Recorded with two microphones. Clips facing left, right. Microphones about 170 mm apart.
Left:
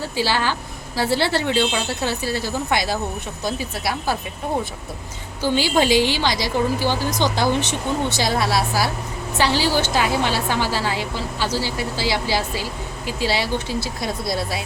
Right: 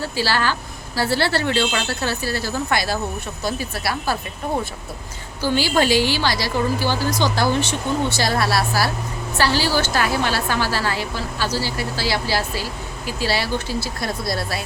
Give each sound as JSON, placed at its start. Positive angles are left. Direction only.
{"t": 0.2, "sound": "a woman's voice", "side_deg": 20}
{"t": 1.5, "sound": "speech", "side_deg": 5}
{"t": 1.9, "sound": "a woman's voice", "side_deg": 20}
{"t": 5.4, "sound": "a woman's voice", "side_deg": 20}